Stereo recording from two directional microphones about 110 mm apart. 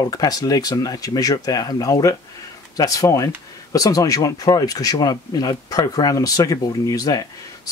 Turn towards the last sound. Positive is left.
turn(degrees=35)  # may be behind; listen again after turning